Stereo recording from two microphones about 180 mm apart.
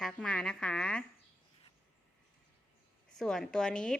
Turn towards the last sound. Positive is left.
turn(degrees=5)  # may be behind; listen again after turning